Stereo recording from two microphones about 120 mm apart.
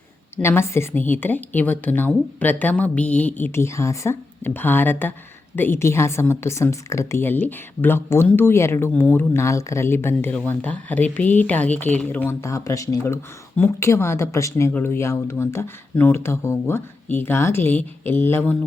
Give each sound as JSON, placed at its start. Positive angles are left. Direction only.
{"t": 0.4, "sound": "a woman's voice", "side_deg": 20}